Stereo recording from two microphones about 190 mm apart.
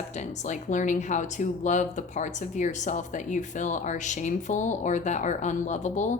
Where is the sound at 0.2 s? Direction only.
40° left (ahead or behind).